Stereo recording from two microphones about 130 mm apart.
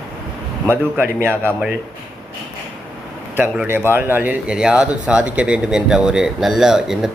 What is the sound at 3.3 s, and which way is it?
A man's voice, 15° right (ahead or behind).